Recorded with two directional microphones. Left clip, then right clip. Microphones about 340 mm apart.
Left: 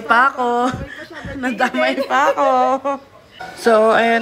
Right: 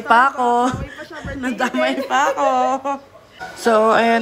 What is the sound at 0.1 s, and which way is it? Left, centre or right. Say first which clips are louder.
Speech: even; centre.